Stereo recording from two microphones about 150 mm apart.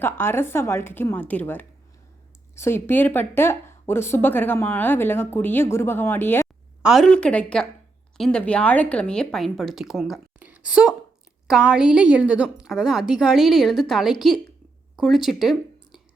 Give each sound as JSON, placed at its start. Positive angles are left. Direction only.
{"t": 0.0, "sound": "speech", "side_deg": 15}
{"t": 6.8, "sound": "speech", "side_deg": 0}